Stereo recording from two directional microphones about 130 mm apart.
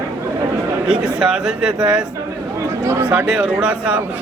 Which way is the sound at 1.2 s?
5° right (ahead or behind).